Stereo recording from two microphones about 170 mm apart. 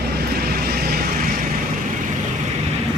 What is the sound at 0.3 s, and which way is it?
Vehicle, 65° right (ahead or behind).